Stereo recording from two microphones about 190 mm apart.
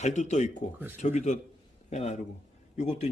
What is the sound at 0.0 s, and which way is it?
Speech, 40° left (ahead or behind).